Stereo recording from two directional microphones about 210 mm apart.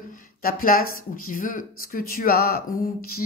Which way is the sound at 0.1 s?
45° left (ahead or behind).